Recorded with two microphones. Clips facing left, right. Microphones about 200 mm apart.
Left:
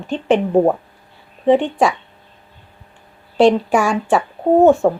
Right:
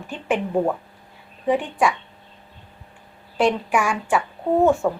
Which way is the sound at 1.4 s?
25° left (ahead or behind).